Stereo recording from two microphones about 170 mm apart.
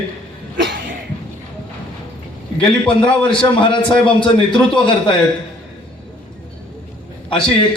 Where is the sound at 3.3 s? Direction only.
30° left (ahead or behind).